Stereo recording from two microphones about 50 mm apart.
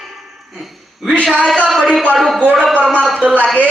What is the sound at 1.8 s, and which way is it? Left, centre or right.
Speech, centre.